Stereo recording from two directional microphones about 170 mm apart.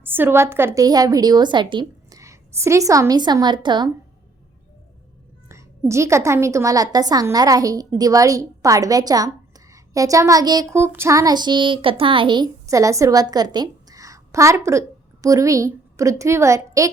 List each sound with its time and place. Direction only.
0.0 s a woman's voice: 10° right (ahead or behind)
5.5 s a woman's voice: 15° right (ahead or behind)